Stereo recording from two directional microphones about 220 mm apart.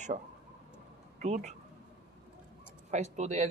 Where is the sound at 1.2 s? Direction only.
30° right (ahead or behind).